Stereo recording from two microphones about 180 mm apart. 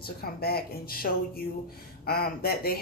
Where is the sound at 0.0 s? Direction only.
60° left (ahead or behind).